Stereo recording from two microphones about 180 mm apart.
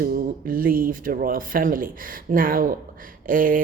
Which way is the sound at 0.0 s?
55° right (ahead or behind).